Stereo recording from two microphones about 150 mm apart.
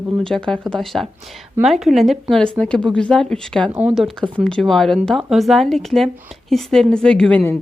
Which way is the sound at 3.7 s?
10° right (ahead or behind).